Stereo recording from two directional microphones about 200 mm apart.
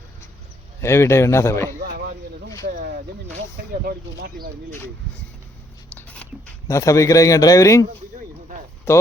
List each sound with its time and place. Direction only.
0.8 s a man's voice: 15° left (ahead or behind)
1.8 s a sound: 45° right (ahead or behind)
2.6 s speech: 40° right (ahead or behind)
5.9 s dog: 10° left (ahead or behind)
6.7 s a man's voice: 15° left (ahead or behind)
8.9 s a man's voice: 10° left (ahead or behind)